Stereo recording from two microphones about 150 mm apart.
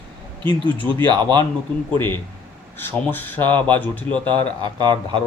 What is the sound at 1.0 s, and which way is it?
Speech, 30° right (ahead or behind).